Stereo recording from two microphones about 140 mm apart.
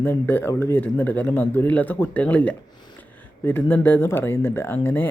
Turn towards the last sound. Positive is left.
turn(degrees=15)  # may be behind; listen again after turning